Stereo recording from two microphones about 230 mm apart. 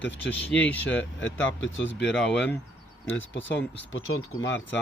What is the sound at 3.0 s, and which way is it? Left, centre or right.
Speech, left.